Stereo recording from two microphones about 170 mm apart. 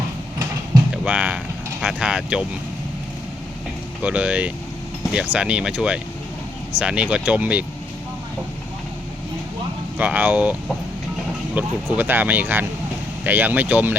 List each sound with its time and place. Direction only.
1.0 s speech: 10° right (ahead or behind)
4.0 s speech: 5° right (ahead or behind)
10.0 s speech: 10° right (ahead or behind)
11.5 s speech: 10° right (ahead or behind)